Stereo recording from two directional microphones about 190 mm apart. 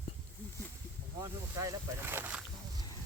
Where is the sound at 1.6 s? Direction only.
15° right (ahead or behind).